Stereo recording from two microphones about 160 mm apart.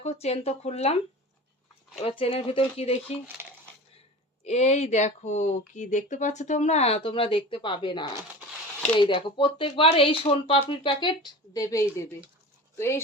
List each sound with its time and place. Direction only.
0.0 s speech: 40° left (ahead or behind)
2.0 s speech: 35° left (ahead or behind)
3.4 s dishes: 15° right (ahead or behind)
4.4 s speech: 45° left (ahead or behind); by 13.0 s 15° left (ahead or behind)